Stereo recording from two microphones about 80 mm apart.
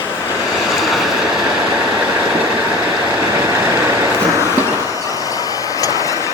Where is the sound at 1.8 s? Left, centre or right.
Right.